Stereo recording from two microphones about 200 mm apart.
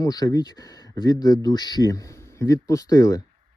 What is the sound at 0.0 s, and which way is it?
Speech, 20° left (ahead or behind).